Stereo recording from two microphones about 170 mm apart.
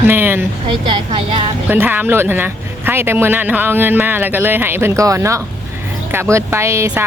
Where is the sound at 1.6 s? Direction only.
10° right (ahead or behind).